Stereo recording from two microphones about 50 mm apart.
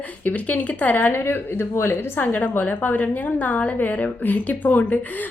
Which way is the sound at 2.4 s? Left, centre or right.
Left.